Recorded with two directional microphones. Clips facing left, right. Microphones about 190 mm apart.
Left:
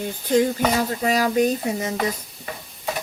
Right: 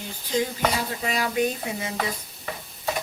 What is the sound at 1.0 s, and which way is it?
Speech, 40° left (ahead or behind).